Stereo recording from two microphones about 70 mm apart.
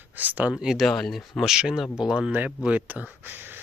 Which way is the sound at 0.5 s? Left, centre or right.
Centre.